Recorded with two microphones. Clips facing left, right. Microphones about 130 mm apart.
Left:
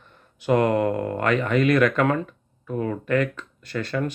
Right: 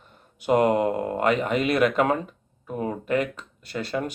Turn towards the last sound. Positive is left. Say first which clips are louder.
# left 2 dB
turn(degrees=-15)  # may be behind; listen again after turning